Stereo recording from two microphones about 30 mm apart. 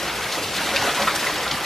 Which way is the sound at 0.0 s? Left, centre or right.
Centre.